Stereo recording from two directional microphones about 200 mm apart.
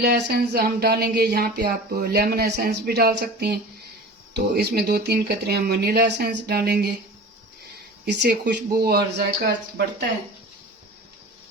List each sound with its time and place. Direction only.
0.0 s speech: 55° right (ahead or behind)
8.0 s speech: 55° right (ahead or behind)